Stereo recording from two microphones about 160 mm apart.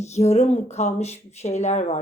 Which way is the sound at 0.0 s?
45° left (ahead or behind).